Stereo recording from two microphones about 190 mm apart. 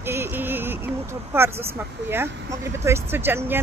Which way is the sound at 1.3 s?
10° right (ahead or behind).